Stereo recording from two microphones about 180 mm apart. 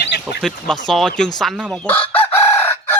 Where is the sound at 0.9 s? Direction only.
Centre (ahead or behind).